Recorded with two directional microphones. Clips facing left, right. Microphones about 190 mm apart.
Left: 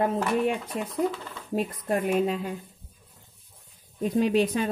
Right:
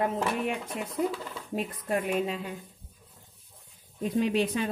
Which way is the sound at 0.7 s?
40° left (ahead or behind).